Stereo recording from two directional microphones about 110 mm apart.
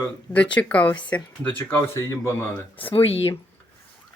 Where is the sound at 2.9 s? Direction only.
60° left (ahead or behind).